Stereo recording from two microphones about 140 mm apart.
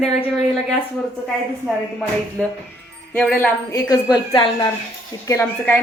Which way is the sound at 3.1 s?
10° left (ahead or behind).